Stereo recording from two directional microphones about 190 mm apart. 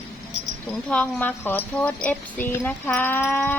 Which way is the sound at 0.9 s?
5° left (ahead or behind).